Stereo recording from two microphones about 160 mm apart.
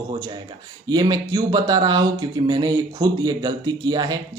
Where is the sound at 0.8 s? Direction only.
25° right (ahead or behind).